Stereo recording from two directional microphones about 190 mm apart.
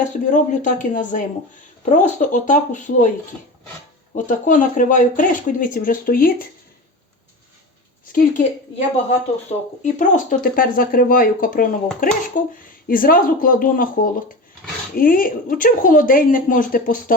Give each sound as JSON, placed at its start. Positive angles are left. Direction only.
{"t": 0.0, "sound": "speech", "side_deg": 40}
{"t": 4.3, "sound": "speech", "side_deg": 45}
{"t": 8.0, "sound": "speech", "side_deg": 45}